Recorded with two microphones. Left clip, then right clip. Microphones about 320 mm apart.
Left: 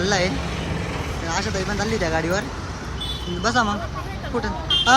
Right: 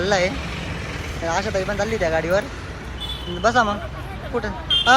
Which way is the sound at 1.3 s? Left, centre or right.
Centre.